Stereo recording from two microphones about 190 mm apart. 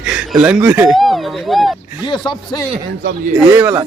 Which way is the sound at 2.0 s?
25° left (ahead or behind).